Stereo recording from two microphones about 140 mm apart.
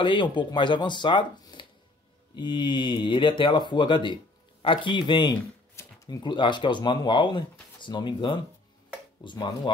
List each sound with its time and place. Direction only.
0.0 s speech: 35° left (ahead or behind)